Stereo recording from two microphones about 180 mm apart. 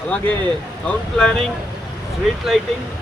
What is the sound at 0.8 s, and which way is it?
Speech, 5° left (ahead or behind).